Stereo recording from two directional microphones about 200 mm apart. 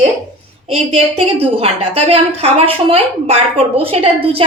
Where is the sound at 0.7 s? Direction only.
30° right (ahead or behind).